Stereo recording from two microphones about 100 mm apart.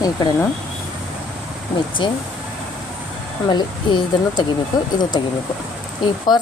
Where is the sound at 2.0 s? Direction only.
55° left (ahead or behind).